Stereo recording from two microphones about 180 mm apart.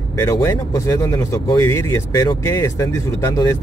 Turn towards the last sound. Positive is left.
turn(degrees=15)  # may be behind; listen again after turning